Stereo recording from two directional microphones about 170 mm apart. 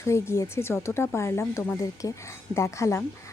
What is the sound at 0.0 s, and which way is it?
A woman's voice, 15° left (ahead or behind).